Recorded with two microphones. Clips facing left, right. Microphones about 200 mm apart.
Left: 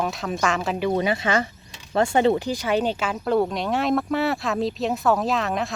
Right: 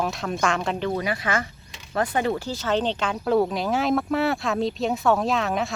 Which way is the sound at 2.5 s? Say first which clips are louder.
Left 2 dB; 15° left (ahead or behind).